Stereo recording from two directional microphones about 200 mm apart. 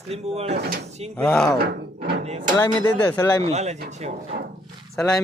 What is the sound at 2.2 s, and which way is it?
Speech, 30° right (ahead or behind).